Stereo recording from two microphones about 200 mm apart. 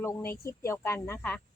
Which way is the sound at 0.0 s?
10° left (ahead or behind).